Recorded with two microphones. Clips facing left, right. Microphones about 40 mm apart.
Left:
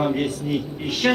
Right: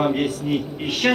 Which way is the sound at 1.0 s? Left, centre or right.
Centre.